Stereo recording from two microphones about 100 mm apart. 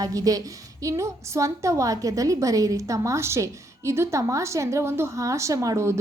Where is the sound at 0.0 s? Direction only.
35° right (ahead or behind).